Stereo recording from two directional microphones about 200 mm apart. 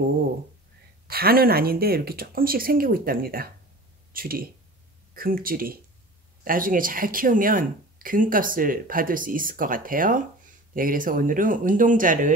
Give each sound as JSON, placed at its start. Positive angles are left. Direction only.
{"t": 1.0, "sound": "speech", "side_deg": -50}